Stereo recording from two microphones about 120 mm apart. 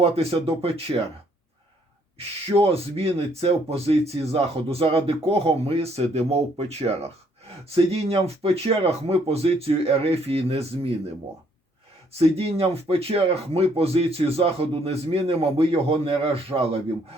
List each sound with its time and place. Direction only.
0.0 s speech: 50° right (ahead or behind)
2.1 s speech: 55° right (ahead or behind)
12.2 s speech: 55° right (ahead or behind)